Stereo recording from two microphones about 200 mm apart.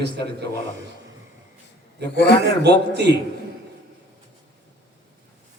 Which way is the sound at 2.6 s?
55° right (ahead or behind).